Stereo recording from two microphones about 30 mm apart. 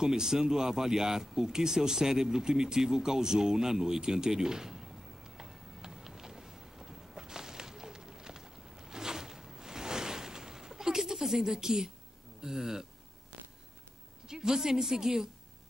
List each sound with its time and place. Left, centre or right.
0.0 s speech: centre
4.3 s a sound: centre
12.4 s speech: centre
14.2 s a woman's voice: right